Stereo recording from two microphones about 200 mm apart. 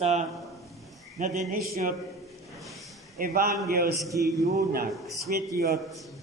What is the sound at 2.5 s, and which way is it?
Snort, centre (ahead or behind).